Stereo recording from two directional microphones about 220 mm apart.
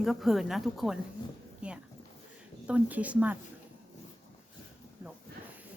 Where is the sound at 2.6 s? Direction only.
5° right (ahead or behind).